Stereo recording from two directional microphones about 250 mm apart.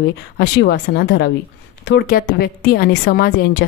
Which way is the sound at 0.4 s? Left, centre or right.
Left.